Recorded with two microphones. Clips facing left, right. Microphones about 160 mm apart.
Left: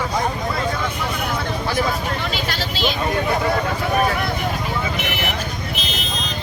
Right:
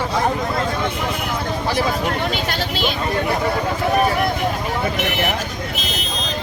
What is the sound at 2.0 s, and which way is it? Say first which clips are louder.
Vehicle: right 3 dB; 50° right (ahead or behind).